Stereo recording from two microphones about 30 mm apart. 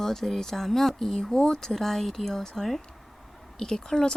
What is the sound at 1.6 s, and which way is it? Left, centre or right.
Speech, centre.